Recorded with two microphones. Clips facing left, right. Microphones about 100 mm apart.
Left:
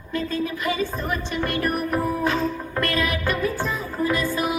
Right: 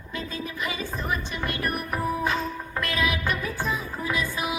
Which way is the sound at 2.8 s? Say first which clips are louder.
Left 2 dB; 50° left (ahead or behind).